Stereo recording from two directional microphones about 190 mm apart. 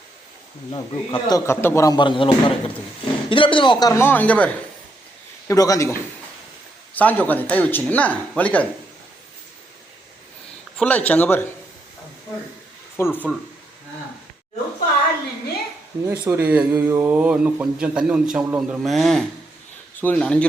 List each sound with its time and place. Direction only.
0.7 s a man's voice: 20° left (ahead or behind)
5.5 s speech: 15° left (ahead or behind)
10.8 s speech: 5° left (ahead or behind)
13.0 s speech: 10° left (ahead or behind)
16.0 s speech: 10° right (ahead or behind); by 20.5 s 5° left (ahead or behind)